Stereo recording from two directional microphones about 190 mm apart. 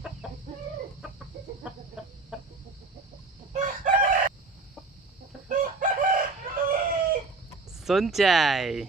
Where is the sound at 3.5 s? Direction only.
40° right (ahead or behind).